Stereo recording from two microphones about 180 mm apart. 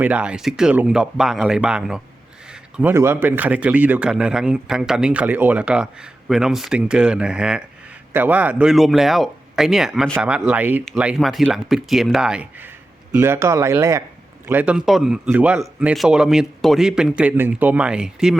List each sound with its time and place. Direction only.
0.0 s speech: 5° right (ahead or behind)